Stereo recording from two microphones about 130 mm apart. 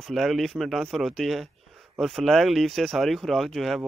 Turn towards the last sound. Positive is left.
turn(degrees=0)  # may be behind; listen again after turning